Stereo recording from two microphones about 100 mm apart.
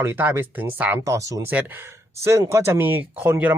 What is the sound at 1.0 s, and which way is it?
Speech, 30° right (ahead or behind).